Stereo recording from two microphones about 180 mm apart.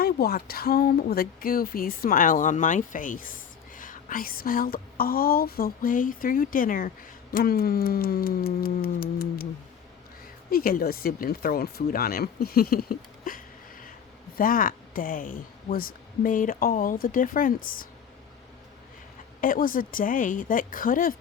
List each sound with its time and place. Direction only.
0.0 s speech: 55° left (ahead or behind)
10.5 s speech: 55° left (ahead or behind)
19.4 s speech: 50° left (ahead or behind)